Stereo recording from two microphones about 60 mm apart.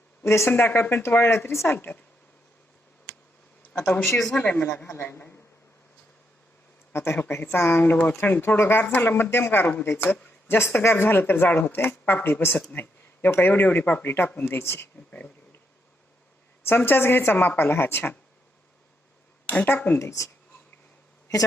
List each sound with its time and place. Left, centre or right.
0.2 s speech: left
0.5 s speech: left
0.8 s speech: left
1.6 s speech: left
3.7 s speech: centre
4.4 s speech: left
4.9 s speech: left
6.9 s speech: left
14.5 s speech: left
16.6 s speech: left
17.3 s speech: left
19.6 s speech: left
20.0 s speech: left